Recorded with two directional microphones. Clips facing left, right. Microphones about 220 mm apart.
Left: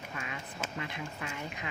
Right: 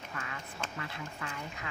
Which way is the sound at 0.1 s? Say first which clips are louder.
Left 1 dB; 20° left (ahead or behind).